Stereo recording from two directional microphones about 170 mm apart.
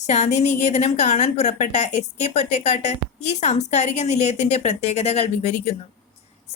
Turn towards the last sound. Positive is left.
turn(degrees=40)  # may be behind; listen again after turning